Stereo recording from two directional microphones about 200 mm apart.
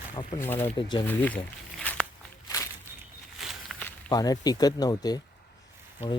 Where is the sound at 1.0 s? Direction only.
10° left (ahead or behind).